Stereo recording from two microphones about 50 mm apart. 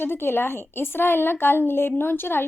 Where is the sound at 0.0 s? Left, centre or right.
Left.